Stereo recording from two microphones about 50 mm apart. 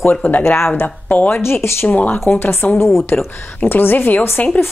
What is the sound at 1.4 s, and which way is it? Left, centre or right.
Speech, left.